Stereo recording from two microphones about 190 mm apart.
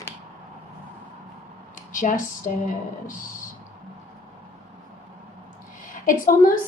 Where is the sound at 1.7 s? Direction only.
45° left (ahead or behind).